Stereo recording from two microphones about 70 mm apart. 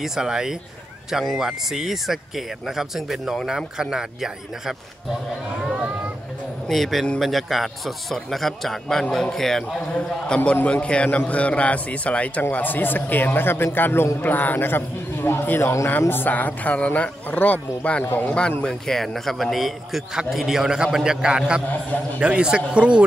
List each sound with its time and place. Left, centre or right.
0.0 s a man's voice: centre
6.7 s a man's voice: centre